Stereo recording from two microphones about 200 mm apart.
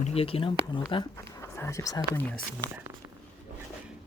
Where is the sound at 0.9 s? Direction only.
15° left (ahead or behind).